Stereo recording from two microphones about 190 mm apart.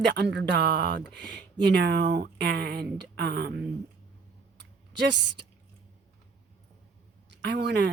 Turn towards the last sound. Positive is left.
turn(degrees=-60)  # may be behind; listen again after turning